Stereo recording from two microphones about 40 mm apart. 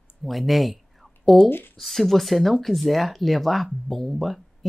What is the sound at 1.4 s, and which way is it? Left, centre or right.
Speech, left.